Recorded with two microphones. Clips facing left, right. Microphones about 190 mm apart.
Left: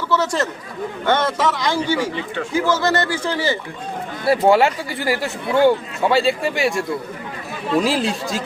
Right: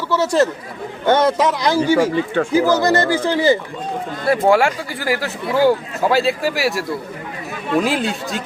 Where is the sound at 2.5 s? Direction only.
35° right (ahead or behind).